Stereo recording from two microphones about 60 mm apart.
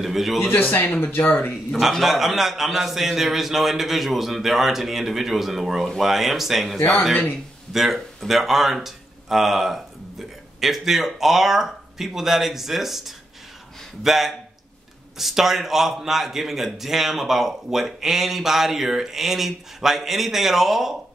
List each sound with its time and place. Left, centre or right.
0.0 s a man's voice: centre
0.5 s speech: left
1.7 s a man's voice: centre